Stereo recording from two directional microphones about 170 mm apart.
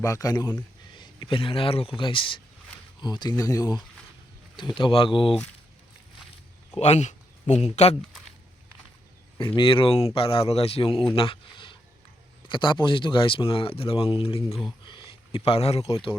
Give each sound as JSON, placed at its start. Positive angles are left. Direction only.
{"t": 0.0, "sound": "speech", "side_deg": 20}
{"t": 6.7, "sound": "speech", "side_deg": 40}
{"t": 9.6, "sound": "speech", "side_deg": 30}